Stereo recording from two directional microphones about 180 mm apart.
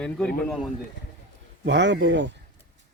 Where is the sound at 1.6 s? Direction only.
75° right (ahead or behind).